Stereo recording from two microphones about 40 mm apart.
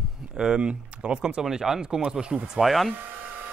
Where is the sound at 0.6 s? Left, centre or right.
Right.